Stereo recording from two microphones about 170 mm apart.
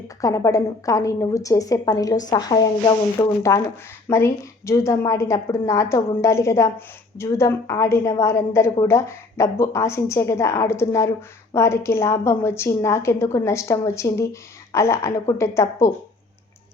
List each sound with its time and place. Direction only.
0.2 s a woman's voice: 20° left (ahead or behind)